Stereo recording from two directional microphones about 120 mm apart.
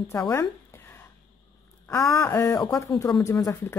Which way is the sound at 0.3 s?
20° left (ahead or behind).